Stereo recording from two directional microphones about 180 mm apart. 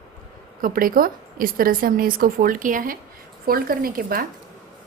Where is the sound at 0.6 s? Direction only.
50° right (ahead or behind).